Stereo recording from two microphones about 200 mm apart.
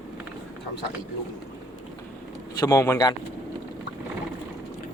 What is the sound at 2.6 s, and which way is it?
Speech, 15° left (ahead or behind).